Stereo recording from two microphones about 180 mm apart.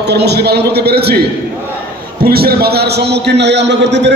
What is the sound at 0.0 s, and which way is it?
A man's voice, 65° right (ahead or behind).